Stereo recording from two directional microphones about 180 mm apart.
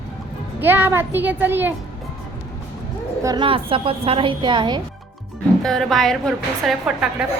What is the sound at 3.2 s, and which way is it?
A woman's voice, 25° right (ahead or behind).